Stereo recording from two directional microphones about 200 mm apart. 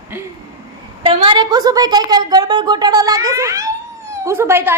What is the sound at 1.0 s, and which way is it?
A woman's voice, 25° right (ahead or behind).